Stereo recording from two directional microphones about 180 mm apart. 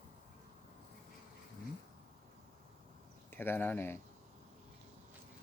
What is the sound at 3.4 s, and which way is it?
Speech, 10° left (ahead or behind).